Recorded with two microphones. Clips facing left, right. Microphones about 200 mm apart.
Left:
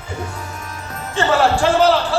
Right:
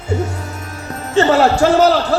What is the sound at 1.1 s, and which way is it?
A man's voice, 40° right (ahead or behind).